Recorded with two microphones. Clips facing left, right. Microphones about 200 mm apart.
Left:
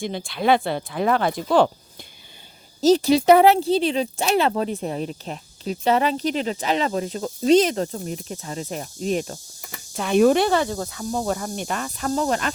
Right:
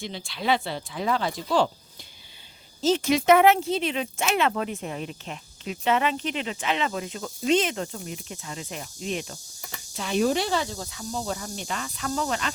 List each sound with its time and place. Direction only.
0.0 s speech: 50° left (ahead or behind)
2.8 s speech: 35° left (ahead or behind)
9.9 s speech: 55° left (ahead or behind)